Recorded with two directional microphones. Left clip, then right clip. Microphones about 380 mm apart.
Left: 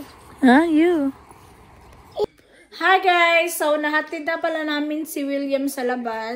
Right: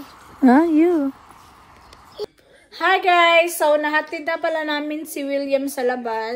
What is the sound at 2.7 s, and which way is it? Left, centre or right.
A woman's voice, centre.